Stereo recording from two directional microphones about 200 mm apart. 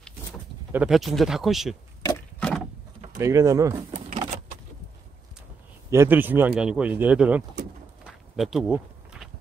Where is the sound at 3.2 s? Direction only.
15° right (ahead or behind).